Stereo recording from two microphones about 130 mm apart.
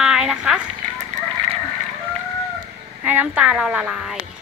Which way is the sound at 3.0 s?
10° right (ahead or behind).